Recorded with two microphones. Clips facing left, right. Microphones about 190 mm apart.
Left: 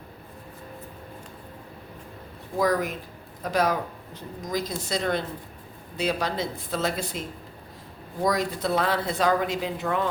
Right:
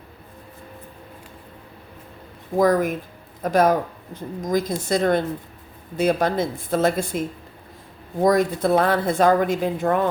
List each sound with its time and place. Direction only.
2.6 s speech: 50° right (ahead or behind)